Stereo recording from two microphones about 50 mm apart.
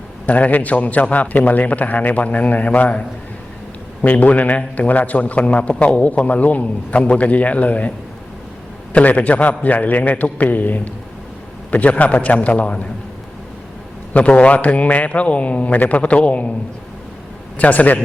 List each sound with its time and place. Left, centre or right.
0.3 s a man's voice: left
4.0 s a man's voice: left
14.1 s a man's voice: left
17.6 s a man's voice: left